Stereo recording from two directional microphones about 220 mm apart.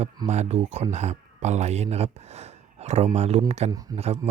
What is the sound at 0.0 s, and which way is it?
Speech, 30° right (ahead or behind).